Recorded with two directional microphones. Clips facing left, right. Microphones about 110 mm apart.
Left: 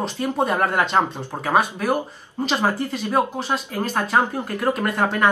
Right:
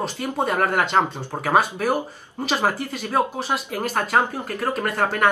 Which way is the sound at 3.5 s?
15° right (ahead or behind).